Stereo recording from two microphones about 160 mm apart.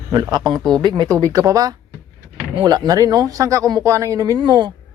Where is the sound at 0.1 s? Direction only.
25° right (ahead or behind).